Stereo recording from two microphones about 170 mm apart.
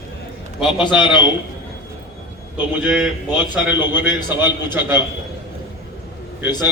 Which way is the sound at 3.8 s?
10° right (ahead or behind).